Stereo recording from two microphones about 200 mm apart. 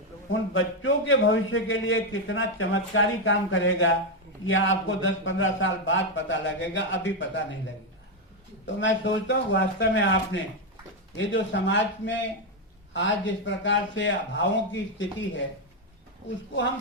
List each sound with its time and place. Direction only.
0.3 s a man's voice: 75° left (ahead or behind)
8.6 s a man's voice: 70° left (ahead or behind)